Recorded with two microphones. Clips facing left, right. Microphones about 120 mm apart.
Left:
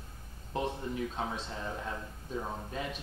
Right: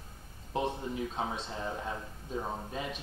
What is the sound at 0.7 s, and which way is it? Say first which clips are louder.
Speech: even; 10° right (ahead or behind).